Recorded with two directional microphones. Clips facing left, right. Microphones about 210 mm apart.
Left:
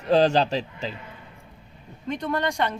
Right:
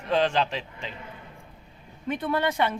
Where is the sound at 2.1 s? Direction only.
5° right (ahead or behind).